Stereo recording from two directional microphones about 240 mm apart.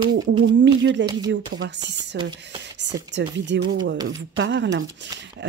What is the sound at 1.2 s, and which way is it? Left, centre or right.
Speech, right.